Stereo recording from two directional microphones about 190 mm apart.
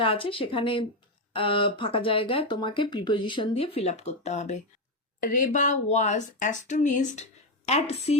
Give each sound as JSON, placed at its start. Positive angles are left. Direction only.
{"t": 0.0, "sound": "speech", "side_deg": 30}